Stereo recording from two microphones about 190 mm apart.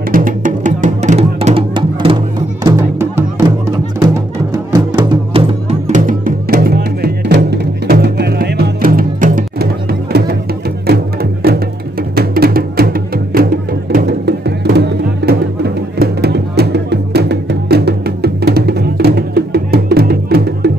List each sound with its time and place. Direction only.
0.1 s music: 45° right (ahead or behind); by 2.1 s 25° right (ahead or behind)
2.6 s music: 15° right (ahead or behind)
4.7 s music: 25° right (ahead or behind); by 10.3 s 55° right (ahead or behind)
12.2 s music: 55° right (ahead or behind)